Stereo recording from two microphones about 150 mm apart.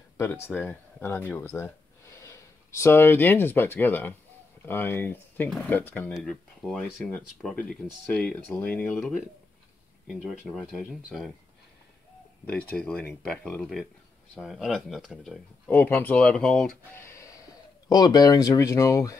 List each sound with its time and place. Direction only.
0.2 s speech: 15° left (ahead or behind)
12.4 s speech: 10° left (ahead or behind)
16.9 s a sound: 15° left (ahead or behind)
17.8 s speech: 25° left (ahead or behind)